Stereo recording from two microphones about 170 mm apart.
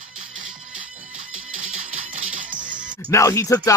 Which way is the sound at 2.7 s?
50° right (ahead or behind).